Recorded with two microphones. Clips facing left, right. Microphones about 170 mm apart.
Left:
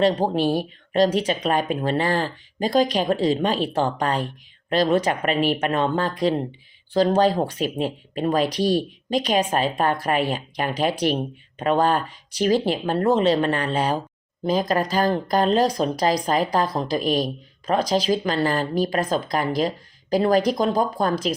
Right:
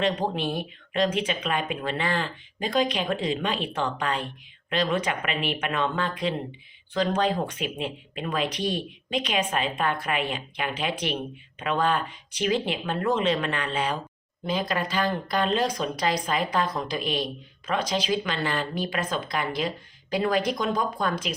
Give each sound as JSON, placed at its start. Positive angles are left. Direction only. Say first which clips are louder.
{"t": 0.0, "sound": "speech", "louder": "left 6 dB", "side_deg": 35}